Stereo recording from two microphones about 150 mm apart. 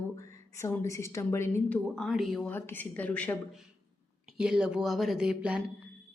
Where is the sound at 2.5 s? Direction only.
15° left (ahead or behind).